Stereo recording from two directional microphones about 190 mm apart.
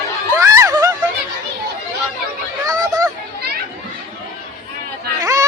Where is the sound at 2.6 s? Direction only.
20° right (ahead or behind).